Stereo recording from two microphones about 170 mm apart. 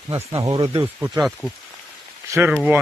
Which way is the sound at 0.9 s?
15° right (ahead or behind).